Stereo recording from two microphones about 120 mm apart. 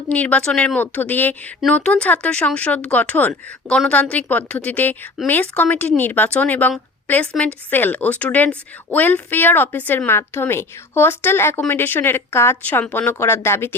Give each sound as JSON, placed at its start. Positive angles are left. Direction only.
{"t": 0.1, "sound": "a woman's voice", "side_deg": 10}